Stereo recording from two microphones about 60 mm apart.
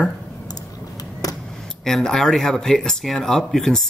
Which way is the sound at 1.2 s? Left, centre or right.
Left.